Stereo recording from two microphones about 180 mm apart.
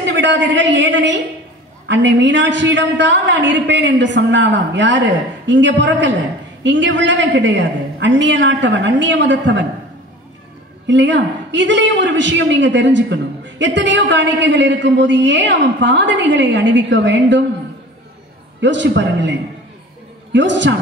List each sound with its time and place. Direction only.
0.0 s a woman's voice: 85° right
10.9 s a woman's voice: 85° right
18.6 s a woman's voice: 85° right
20.3 s a woman's voice: 85° right